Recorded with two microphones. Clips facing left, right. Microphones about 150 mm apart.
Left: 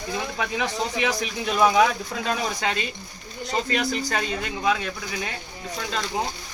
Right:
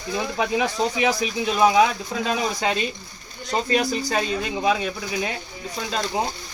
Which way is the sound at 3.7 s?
15° right (ahead or behind).